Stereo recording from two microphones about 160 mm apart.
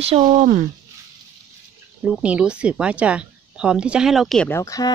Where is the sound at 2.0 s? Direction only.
10° right (ahead or behind).